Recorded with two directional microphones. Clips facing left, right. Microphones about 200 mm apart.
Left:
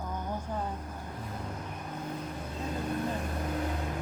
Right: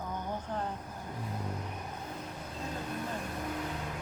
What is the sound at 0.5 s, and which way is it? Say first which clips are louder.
Vehicle: even; 10° left (ahead or behind).